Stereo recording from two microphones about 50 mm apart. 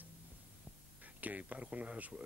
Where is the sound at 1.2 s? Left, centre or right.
Right.